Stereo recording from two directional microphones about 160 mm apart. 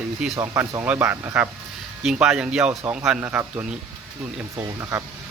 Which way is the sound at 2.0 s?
5° right (ahead or behind).